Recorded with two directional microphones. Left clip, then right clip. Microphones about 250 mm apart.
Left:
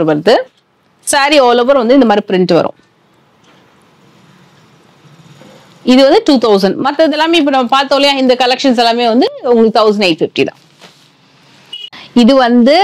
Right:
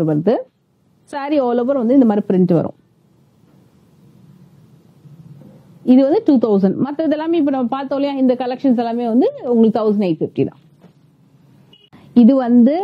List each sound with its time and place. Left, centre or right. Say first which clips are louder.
0.0 s speech: left 8 dB; centre
5.4 s speech: left 8 dB; centre
11.8 s a sound: left 3 dB; centre